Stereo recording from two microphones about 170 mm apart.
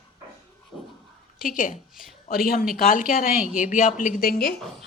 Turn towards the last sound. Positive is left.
turn(degrees=60)  # may be behind; listen again after turning